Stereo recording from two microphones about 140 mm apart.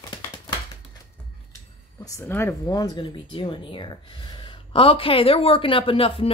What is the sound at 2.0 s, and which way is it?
Speech, 20° left (ahead or behind).